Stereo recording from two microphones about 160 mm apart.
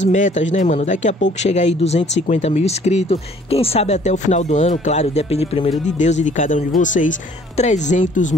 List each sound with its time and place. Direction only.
0.0 s a man's voice: 50° left (ahead or behind)